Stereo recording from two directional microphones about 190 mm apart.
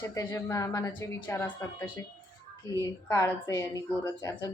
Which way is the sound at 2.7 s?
15° left (ahead or behind).